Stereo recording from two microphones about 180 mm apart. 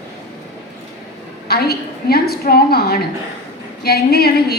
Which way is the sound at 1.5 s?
60° left (ahead or behind).